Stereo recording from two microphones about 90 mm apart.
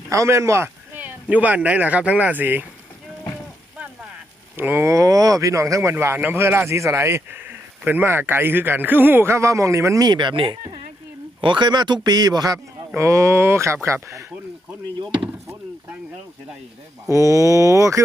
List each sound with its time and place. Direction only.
0.1 s speech: 35° right (ahead or behind)
0.9 s speech: 15° right (ahead or behind)
4.5 s speech: 20° right (ahead or behind)
4.9 s speech: 40° right (ahead or behind)
10.1 s speech: 60° right (ahead or behind)
13.0 s speech: 35° right (ahead or behind)
17.1 s speech: 35° right (ahead or behind)